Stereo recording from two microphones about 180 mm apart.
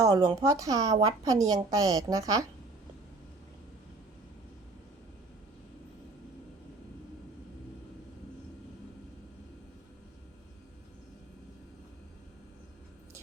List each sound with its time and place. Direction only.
0.1 s a woman's voice: 20° right (ahead or behind)